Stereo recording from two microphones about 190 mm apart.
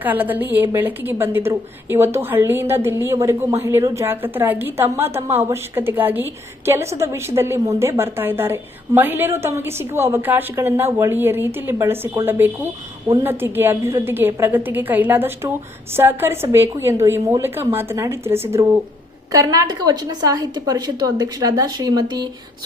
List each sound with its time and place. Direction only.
0.0 s a woman's voice: 10° right (ahead or behind)